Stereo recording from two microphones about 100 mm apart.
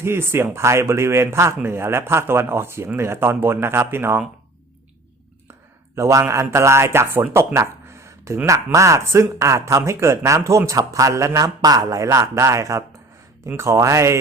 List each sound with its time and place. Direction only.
0.0 s speech: 25° right (ahead or behind)
6.0 s speech: 30° right (ahead or behind)